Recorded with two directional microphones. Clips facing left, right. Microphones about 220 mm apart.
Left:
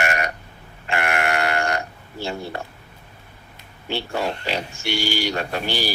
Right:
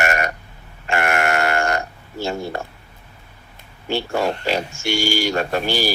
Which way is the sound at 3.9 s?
45° right (ahead or behind).